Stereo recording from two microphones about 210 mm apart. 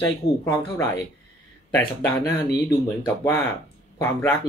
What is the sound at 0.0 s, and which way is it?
Speech, 15° left (ahead or behind).